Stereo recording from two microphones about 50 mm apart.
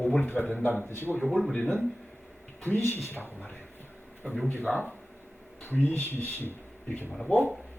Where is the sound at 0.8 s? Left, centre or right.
Left.